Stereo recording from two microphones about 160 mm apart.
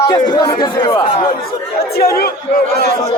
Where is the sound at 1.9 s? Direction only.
75° left (ahead or behind).